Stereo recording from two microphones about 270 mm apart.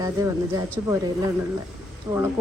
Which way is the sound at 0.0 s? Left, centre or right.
Centre.